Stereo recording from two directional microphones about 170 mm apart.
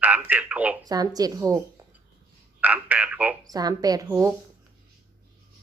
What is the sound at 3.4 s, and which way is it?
Speech, 20° right (ahead or behind).